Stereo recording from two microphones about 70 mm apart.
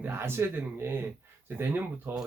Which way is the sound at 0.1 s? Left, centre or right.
Right.